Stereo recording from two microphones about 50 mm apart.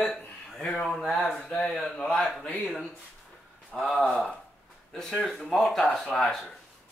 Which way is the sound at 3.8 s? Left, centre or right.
Centre.